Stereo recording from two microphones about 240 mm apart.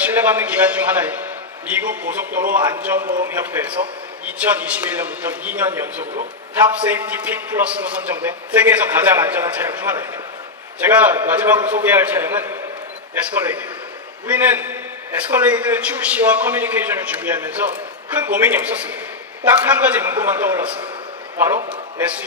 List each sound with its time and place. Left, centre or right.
0.0 s a man's voice: centre